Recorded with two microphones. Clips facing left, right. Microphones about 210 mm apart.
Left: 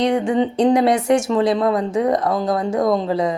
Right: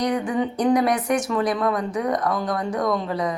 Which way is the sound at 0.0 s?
25° left (ahead or behind).